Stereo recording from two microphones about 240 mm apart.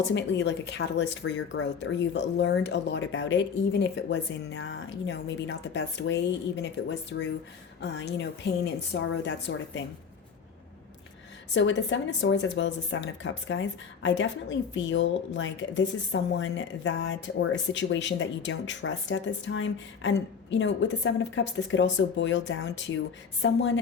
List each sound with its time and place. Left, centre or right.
0.0 s speech: left
11.5 s speech: left